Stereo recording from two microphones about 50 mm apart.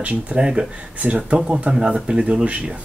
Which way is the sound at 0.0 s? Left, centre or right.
Right.